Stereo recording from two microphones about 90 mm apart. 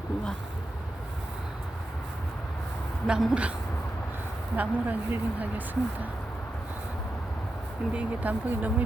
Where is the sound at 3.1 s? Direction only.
5° right (ahead or behind).